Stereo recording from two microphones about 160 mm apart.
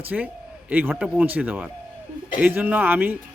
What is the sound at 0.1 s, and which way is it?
A man's voice, centre (ahead or behind).